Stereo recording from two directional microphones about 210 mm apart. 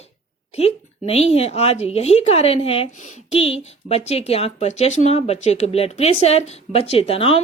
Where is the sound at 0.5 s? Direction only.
30° left (ahead or behind).